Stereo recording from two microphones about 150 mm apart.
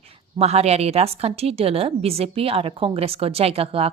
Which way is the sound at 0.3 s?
45° right (ahead or behind).